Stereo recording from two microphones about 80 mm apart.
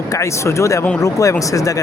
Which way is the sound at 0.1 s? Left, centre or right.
Left.